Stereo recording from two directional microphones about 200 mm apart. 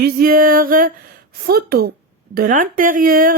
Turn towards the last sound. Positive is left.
turn(degrees=-45)  # may be behind; listen again after turning